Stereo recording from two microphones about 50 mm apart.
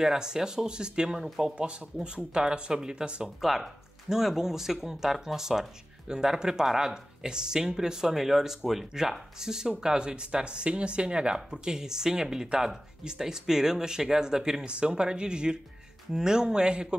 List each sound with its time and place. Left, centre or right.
0.0 s speech: centre
3.3 s speech: centre